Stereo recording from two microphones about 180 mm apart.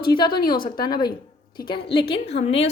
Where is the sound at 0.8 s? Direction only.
25° left (ahead or behind).